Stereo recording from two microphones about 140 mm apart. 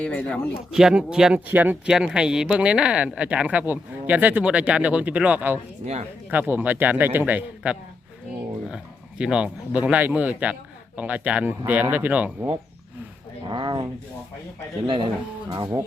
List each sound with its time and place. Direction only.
0.0 s speech: 10° left (ahead or behind)
0.7 s speech: 5° right (ahead or behind)
5.8 s speech: 50° right (ahead or behind)
6.3 s speech: 15° right (ahead or behind)
13.5 s speech: 30° right (ahead or behind)
14.8 s speech: 30° right (ahead or behind)